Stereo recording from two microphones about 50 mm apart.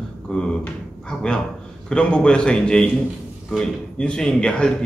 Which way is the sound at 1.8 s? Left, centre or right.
Centre.